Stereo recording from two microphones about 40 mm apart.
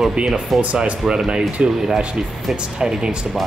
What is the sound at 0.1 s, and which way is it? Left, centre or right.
Speech, right.